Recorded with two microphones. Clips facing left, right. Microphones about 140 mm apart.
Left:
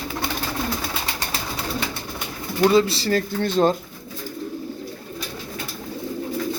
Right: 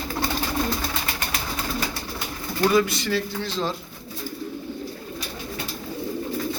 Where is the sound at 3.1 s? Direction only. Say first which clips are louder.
Left 7 dB; 55° left (ahead or behind).